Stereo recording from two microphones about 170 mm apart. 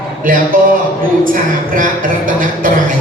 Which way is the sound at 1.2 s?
50° right (ahead or behind).